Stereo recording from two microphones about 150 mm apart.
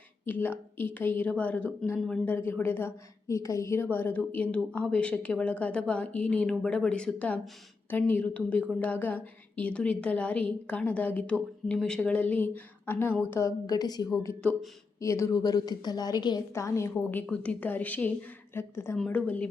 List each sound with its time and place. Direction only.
0.3 s a woman's voice: 10° left (ahead or behind)